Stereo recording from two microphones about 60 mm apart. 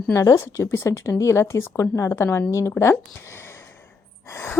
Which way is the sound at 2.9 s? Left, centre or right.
Left.